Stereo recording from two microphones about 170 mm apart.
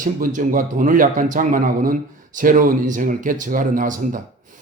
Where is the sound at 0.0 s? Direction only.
50° right (ahead or behind).